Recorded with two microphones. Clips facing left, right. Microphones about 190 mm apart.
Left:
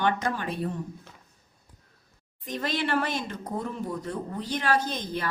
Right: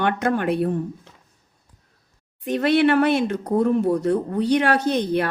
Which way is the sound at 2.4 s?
65° right (ahead or behind).